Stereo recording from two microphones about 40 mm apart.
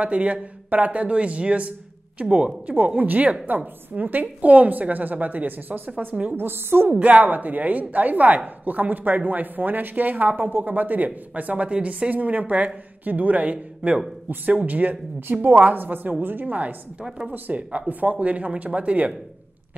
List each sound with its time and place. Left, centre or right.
0.0 s a woman's voice: right
1.0 s a woman's voice: right
6.3 s a woman's voice: right
6.9 s a woman's voice: right